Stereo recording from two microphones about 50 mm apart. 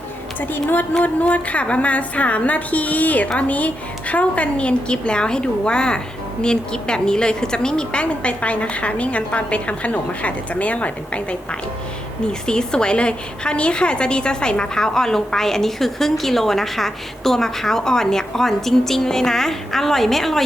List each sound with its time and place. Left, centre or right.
0.3 s a woman's voice: left
0.9 s a woman's voice: left
12.5 s a woman's voice: centre